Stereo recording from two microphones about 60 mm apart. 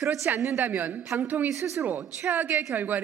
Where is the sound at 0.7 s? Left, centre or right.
Right.